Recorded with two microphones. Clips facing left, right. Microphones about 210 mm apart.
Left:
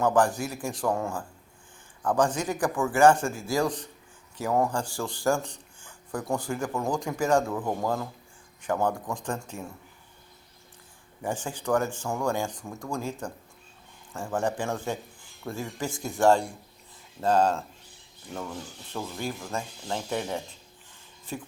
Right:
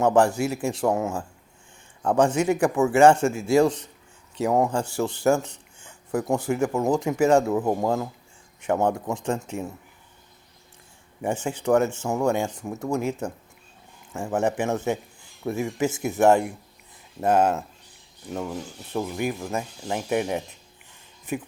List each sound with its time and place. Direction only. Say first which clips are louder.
0.0 s speech: right 4 dB; 25° right (ahead or behind)
11.2 s speech: right 5 dB; 25° right (ahead or behind)